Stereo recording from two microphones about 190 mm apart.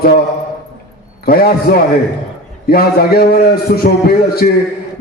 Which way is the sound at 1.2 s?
50° left (ahead or behind).